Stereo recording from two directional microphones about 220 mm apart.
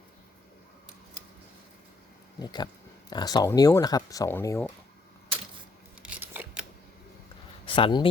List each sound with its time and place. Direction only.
2.4 s speech: 20° left (ahead or behind)
6.0 s scissors: 5° right (ahead or behind)
7.6 s a sound: 25° left (ahead or behind)